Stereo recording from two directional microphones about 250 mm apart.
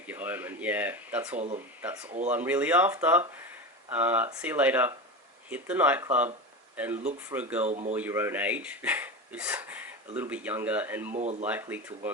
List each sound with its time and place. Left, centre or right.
0.1 s speech: centre
7.6 s speech: right
7.9 s speech: centre
11.1 s speech: right
11.4 s speech: centre